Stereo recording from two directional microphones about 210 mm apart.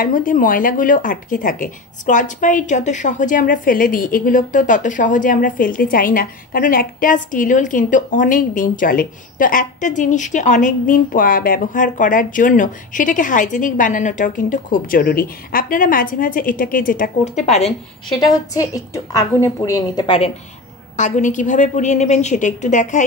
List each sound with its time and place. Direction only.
0.0 s speech: 40° left (ahead or behind)
18.2 s a woman's voice: 15° left (ahead or behind)
20.9 s speech: 35° left (ahead or behind)